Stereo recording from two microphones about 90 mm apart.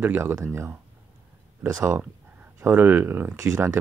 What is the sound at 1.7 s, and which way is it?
Speech, 35° right (ahead or behind).